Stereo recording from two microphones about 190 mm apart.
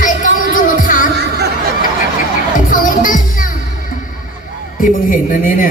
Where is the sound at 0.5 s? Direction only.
45° left (ahead or behind).